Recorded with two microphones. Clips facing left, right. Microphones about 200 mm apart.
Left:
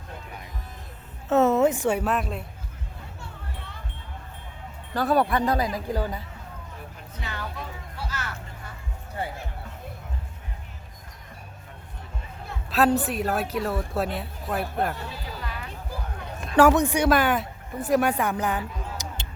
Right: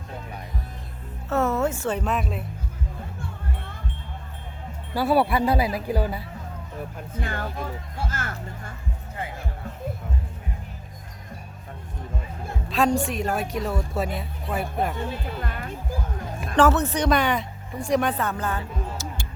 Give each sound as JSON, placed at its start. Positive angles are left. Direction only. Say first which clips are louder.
{"t": 1.3, "sound": "a woman's voice", "louder": "left 4 dB", "side_deg": 20}
{"t": 4.9, "sound": "speech", "louder": "right 1 dB", "side_deg": -10}
{"t": 7.1, "sound": "speech", "louder": "right 4 dB", "side_deg": -50}
{"t": 12.7, "sound": "a woman's voice", "louder": "left 1 dB", "side_deg": 5}
{"t": 15.4, "sound": "music", "louder": "right 4 dB", "side_deg": -50}
{"t": 16.6, "sound": "a woman's voice", "louder": "left 2 dB", "side_deg": 15}